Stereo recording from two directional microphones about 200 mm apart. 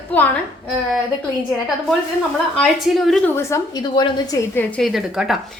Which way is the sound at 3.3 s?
15° left (ahead or behind).